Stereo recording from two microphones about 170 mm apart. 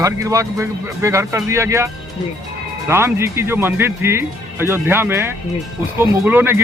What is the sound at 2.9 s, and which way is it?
Speech, 15° right (ahead or behind).